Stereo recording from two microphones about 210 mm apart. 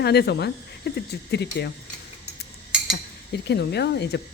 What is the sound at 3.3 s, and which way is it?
Speech, 50° left (ahead or behind).